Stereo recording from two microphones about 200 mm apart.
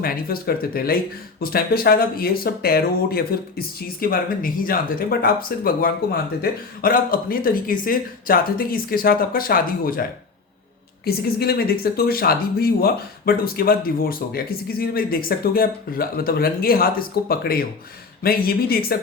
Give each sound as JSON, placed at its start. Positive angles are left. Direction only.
{"t": 0.0, "sound": "speech", "side_deg": 50}